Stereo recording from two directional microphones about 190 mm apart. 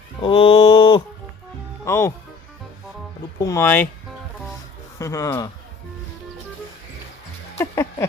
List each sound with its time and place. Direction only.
0.2 s mantra: 25° left (ahead or behind)
1.8 s music: 15° left (ahead or behind)
3.4 s speech: 15° left (ahead or behind)
4.9 s speech: 15° left (ahead or behind)
7.6 s a sound: 15° left (ahead or behind)